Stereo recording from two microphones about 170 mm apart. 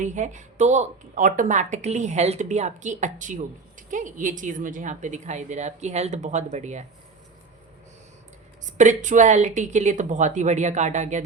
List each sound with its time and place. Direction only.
0.0 s speech: 45° right (ahead or behind)
8.6 s speech: 45° right (ahead or behind)